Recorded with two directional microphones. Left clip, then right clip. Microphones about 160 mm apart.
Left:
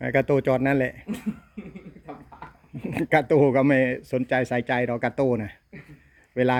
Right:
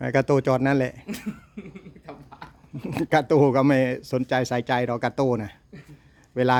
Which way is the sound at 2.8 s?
20° right (ahead or behind).